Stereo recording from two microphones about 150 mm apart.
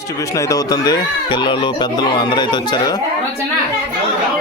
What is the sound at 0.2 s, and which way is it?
Speech, 20° left (ahead or behind).